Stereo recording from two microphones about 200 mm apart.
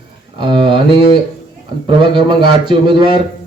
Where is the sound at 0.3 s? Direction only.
25° right (ahead or behind).